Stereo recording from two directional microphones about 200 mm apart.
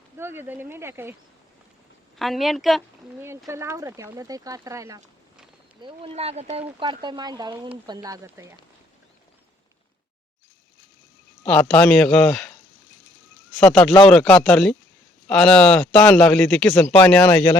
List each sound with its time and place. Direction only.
0.2 s speech: 10° right (ahead or behind)
2.1 s speech: centre (ahead or behind)
3.2 s speech: 10° right (ahead or behind)
5.8 s speech: 30° right (ahead or behind); by 8.5 s 15° right (ahead or behind)
11.4 s speech: 5° left (ahead or behind)
13.6 s speech: 10° left (ahead or behind)